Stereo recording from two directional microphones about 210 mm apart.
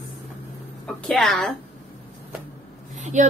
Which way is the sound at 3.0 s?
35° right (ahead or behind).